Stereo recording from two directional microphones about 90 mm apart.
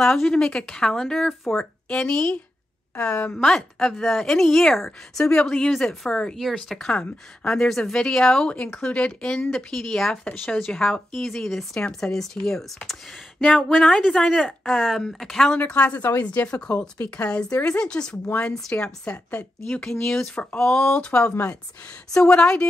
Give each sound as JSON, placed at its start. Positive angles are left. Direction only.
{"t": 0.0, "sound": "speech", "side_deg": 5}
{"t": 15.5, "sound": "speech", "side_deg": 15}